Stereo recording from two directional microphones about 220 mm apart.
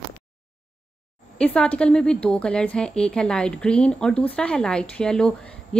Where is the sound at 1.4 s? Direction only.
5° left (ahead or behind).